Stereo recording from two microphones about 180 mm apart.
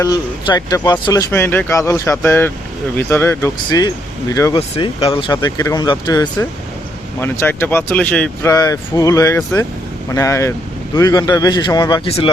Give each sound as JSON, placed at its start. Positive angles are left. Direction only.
{"t": 0.0, "sound": "speech", "side_deg": 20}
{"t": 4.8, "sound": "speech", "side_deg": 30}
{"t": 8.4, "sound": "speech", "side_deg": 20}